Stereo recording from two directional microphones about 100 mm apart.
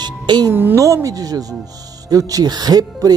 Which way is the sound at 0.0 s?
45° right (ahead or behind).